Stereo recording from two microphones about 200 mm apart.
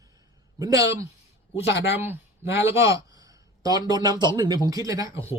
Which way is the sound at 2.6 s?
15° right (ahead or behind).